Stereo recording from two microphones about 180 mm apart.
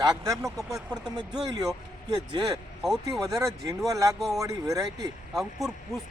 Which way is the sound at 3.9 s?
20° right (ahead or behind).